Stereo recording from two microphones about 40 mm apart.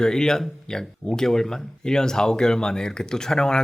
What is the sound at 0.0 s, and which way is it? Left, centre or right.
Speech, centre.